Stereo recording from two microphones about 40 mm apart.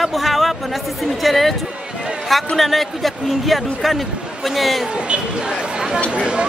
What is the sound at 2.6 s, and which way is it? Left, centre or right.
A man's voice, centre.